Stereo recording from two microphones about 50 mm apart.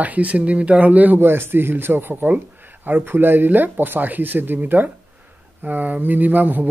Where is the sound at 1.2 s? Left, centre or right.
Right.